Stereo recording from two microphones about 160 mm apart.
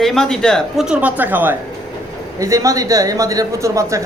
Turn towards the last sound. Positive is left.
turn(degrees=-20)  # may be behind; listen again after turning